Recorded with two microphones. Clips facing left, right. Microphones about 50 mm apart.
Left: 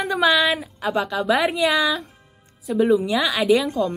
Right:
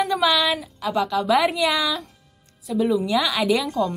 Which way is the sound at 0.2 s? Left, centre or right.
Centre.